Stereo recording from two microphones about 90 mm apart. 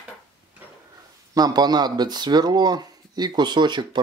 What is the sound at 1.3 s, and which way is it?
Speech, 50° right (ahead or behind).